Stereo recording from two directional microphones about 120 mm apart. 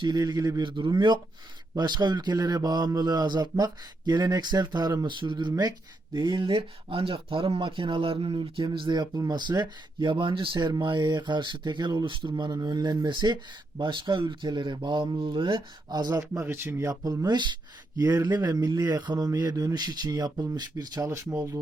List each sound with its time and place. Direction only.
0.0 s speech: 35° right (ahead or behind)